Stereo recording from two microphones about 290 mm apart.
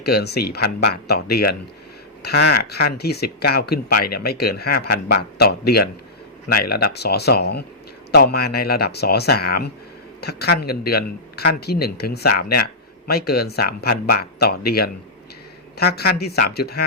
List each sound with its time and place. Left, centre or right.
0.0 s speech: left